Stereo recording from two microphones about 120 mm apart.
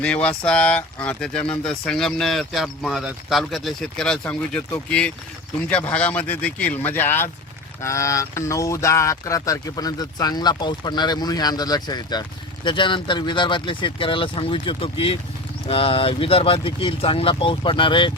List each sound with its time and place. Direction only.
0.0 s speech: 10° left (ahead or behind); by 18.1 s 45° left (ahead or behind)